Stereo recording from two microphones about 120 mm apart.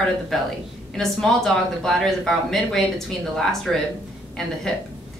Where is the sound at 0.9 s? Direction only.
5° left (ahead or behind).